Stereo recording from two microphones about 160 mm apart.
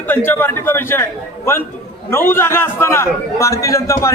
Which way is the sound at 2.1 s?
15° left (ahead or behind).